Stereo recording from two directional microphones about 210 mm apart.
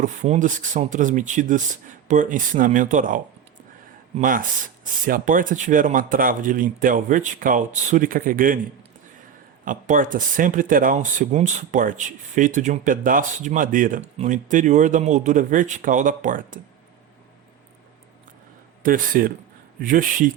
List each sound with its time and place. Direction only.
0.0 s speech: 35° right (ahead or behind)
4.2 s speech: 40° right (ahead or behind)
9.6 s speech: 40° right (ahead or behind)
18.8 s speech: 40° right (ahead or behind)